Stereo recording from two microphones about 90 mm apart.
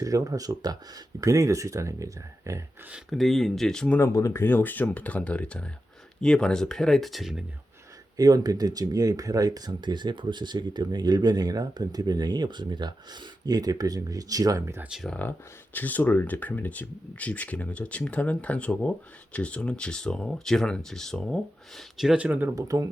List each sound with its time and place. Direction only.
0.0 s speech: 40° right (ahead or behind)
2.9 s speech: centre (ahead or behind)
3.9 s speech: 35° left (ahead or behind); by 7.4 s centre (ahead or behind)
8.1 s speech: 45° right (ahead or behind)
14.8 s speech: 5° right (ahead or behind)
15.1 s speech: 20° left (ahead or behind); by 22.2 s 5° right (ahead or behind)
22.2 s speech: 20° right (ahead or behind)
22.5 s speech: 40° right (ahead or behind)